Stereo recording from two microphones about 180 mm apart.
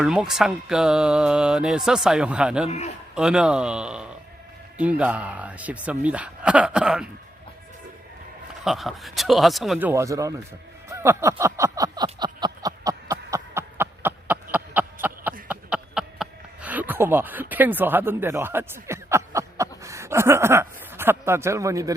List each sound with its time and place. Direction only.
0.0 s speech: 5° right (ahead or behind)
2.6 s a man's voice: 40° left (ahead or behind)
3.2 s speech: 5° right (ahead or behind)
8.6 s speech: centre (ahead or behind); by 12.0 s 20° right (ahead or behind)
12.0 s a sound: 25° right (ahead or behind)
17.5 s speech: 10° right (ahead or behind)